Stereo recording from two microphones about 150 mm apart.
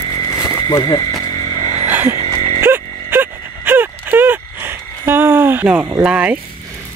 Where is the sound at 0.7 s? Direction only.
25° left (ahead or behind).